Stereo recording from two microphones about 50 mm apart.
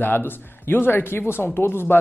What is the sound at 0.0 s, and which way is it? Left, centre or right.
Speech, left.